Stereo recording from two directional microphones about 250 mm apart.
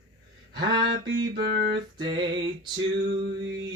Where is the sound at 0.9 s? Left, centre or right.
Right.